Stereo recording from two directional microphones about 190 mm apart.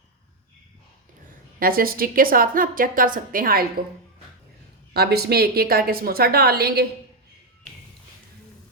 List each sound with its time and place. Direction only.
1.5 s a woman's voice: 50° right (ahead or behind)
4.9 s a woman's voice: 55° right (ahead or behind)